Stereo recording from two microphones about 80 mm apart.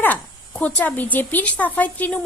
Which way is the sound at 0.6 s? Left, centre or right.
Centre.